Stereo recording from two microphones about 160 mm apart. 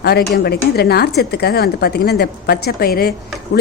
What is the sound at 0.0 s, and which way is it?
A woman's voice, 85° left.